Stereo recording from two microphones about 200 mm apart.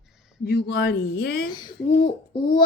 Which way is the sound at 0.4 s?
50° left (ahead or behind).